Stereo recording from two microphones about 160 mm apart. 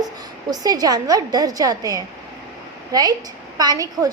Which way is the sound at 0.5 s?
25° right (ahead or behind).